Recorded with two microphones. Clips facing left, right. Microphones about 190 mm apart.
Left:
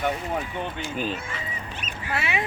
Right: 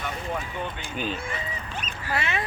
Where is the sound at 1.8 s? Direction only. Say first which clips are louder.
Even; 5° left (ahead or behind).